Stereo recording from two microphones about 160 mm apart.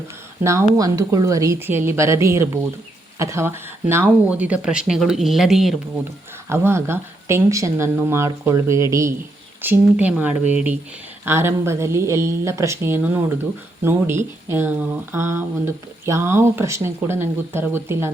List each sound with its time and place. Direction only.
0.4 s speech: 20° right (ahead or behind); by 5.7 s centre (ahead or behind)
6.5 s speech: 15° right (ahead or behind)